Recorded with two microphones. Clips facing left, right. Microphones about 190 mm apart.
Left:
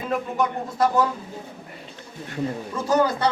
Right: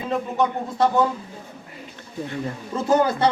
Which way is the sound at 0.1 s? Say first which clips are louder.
Right 2 dB; 20° right (ahead or behind).